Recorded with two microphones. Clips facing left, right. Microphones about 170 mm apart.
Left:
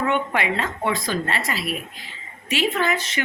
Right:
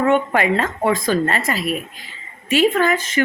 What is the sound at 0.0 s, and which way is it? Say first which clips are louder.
A woman's voice: right 6 dB; 45° right (ahead or behind).